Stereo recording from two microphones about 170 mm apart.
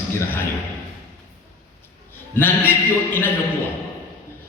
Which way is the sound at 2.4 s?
10° left (ahead or behind).